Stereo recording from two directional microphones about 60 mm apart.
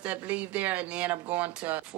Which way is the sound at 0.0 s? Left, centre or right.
Right.